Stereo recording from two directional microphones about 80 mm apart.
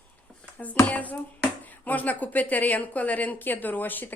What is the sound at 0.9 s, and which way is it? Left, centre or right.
Speech, centre.